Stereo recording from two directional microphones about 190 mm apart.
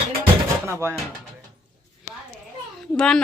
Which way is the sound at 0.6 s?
15° right (ahead or behind).